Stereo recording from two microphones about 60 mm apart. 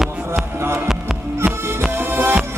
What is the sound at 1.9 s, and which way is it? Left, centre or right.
Music, right.